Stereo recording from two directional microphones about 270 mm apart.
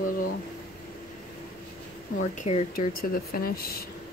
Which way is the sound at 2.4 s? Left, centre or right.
Left.